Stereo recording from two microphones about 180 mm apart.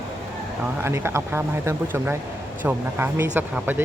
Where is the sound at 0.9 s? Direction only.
15° right (ahead or behind).